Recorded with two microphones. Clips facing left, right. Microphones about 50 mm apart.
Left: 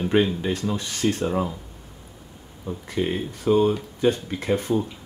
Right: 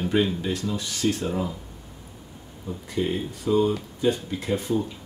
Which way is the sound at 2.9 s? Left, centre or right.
Left.